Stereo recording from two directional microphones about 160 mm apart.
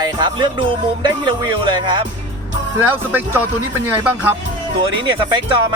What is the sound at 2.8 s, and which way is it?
Speech, 10° right (ahead or behind).